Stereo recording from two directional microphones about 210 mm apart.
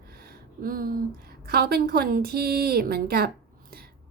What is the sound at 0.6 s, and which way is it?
Speech, 45° right (ahead or behind).